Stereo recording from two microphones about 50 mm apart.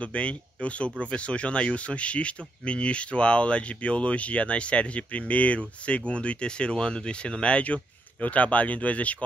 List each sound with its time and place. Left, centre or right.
0.0 s speech: left